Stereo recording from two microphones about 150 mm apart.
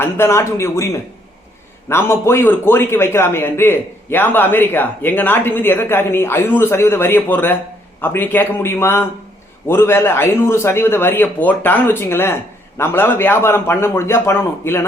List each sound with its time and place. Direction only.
0.0 s speech: 15° left (ahead or behind)
1.9 s a man's voice: 15° left (ahead or behind)